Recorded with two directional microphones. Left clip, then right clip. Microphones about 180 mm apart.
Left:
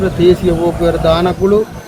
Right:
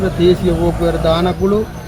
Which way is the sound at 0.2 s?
5° left (ahead or behind).